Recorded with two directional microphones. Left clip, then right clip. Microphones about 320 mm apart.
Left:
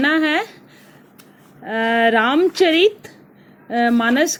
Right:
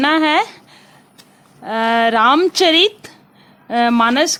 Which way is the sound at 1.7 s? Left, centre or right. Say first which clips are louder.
Right 2 dB; centre.